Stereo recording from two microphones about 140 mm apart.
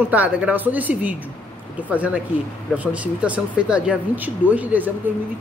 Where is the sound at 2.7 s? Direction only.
10° right (ahead or behind).